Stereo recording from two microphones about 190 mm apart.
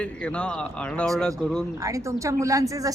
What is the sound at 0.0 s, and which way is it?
A man's voice, 5° left (ahead or behind).